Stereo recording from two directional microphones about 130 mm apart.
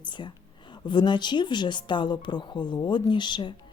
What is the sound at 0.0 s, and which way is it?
A woman's voice, 35° left (ahead or behind).